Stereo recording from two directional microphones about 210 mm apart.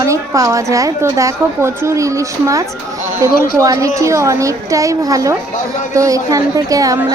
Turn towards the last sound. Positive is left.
turn(degrees=-15)  # may be behind; listen again after turning